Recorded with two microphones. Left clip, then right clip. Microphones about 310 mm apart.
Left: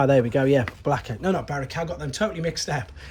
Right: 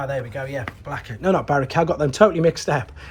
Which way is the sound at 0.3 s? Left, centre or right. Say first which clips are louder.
Left 8 dB; left.